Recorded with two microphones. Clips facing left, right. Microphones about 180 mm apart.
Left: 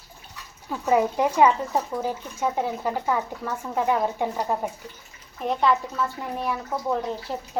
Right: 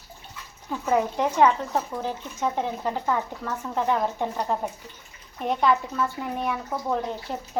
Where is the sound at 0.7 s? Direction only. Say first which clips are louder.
Left 2 dB; 10° left (ahead or behind).